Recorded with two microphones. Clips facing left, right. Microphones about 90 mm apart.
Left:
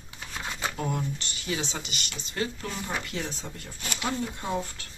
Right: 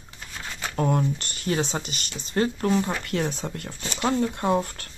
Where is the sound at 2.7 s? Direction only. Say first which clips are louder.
Right 9 dB; 55° right (ahead or behind).